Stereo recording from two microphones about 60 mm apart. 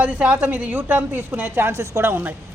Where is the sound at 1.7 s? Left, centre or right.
Right.